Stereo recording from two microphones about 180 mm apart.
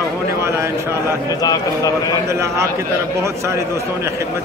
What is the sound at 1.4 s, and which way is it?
Speech, 20° left (ahead or behind).